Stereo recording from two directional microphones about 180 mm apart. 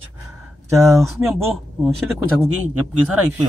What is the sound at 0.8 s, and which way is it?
Speech, 15° right (ahead or behind).